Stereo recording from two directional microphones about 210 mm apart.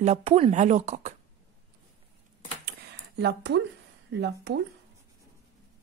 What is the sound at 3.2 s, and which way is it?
Speech, 50° right (ahead or behind).